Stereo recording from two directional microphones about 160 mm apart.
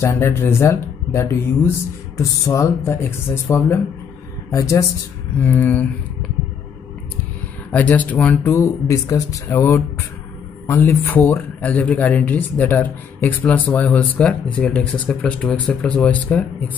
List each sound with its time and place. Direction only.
0.0 s speech: 15° left (ahead or behind)
4.5 s speech: 20° left (ahead or behind)
7.7 s speech: 10° left (ahead or behind)
8.8 s speech: 20° left (ahead or behind)